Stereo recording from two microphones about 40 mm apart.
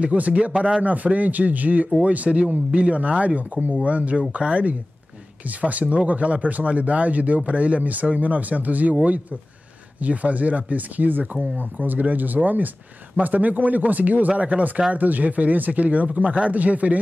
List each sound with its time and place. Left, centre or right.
0.0 s speech: right
9.9 s speech: right